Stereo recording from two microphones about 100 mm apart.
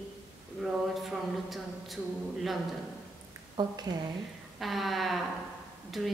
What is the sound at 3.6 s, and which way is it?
Speech, 45° right (ahead or behind).